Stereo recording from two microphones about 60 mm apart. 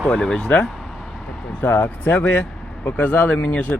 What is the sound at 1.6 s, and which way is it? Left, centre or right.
Speech, left.